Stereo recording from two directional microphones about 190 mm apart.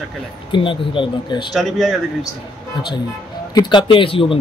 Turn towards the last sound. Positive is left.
turn(degrees=30)  # may be behind; listen again after turning